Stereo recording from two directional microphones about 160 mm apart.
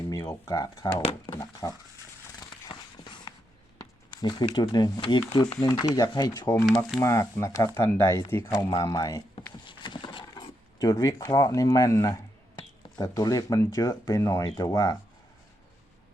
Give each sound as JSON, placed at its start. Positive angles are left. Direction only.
{"t": 0.1, "sound": "speech", "side_deg": 20}
{"t": 2.4, "sound": "a sound", "side_deg": 30}
{"t": 4.1, "sound": "speech", "side_deg": 25}